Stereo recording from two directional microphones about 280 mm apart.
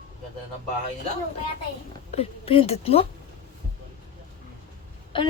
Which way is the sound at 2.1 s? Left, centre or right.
Left.